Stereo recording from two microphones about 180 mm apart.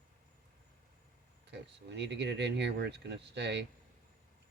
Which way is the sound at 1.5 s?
75° right (ahead or behind).